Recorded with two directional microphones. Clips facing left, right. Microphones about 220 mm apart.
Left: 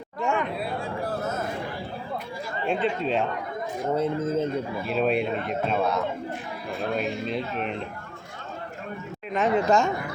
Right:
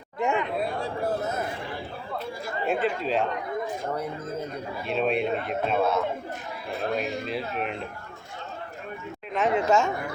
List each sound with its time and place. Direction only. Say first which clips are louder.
0.2 s chatter: right 1 dB; 20° right (ahead or behind)
2.6 s a man's voice: left 1 dB; centre (ahead or behind)
3.9 s speech: left 7 dB; 25° left (ahead or behind)
4.9 s a man's voice: even; centre (ahead or behind)
9.3 s a man's voice: left 1 dB; 5° right (ahead or behind)